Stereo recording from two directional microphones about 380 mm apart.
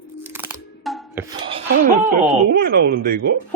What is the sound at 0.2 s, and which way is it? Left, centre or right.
Music, centre.